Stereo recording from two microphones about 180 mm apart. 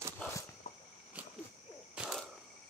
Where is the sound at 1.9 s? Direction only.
5° right (ahead or behind).